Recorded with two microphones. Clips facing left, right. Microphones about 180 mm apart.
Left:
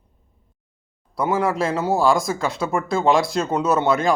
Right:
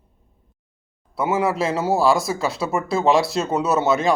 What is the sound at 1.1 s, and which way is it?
Speech, 5° right (ahead or behind).